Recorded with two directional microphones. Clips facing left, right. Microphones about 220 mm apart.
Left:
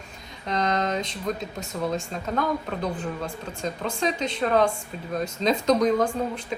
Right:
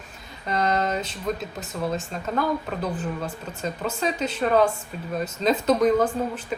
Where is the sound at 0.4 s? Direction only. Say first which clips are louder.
Right 1 dB; 5° right (ahead or behind).